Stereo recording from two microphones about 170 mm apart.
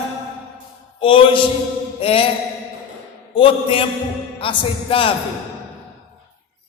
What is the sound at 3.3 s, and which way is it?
Speech, 30° left (ahead or behind).